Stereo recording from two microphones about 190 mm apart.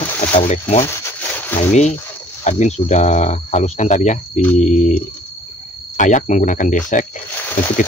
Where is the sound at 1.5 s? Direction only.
35° left (ahead or behind).